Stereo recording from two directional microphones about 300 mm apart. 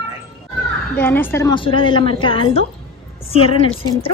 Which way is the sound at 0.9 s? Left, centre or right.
Centre.